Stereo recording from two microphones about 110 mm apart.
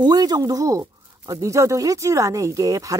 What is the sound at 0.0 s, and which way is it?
Speech, 35° right (ahead or behind).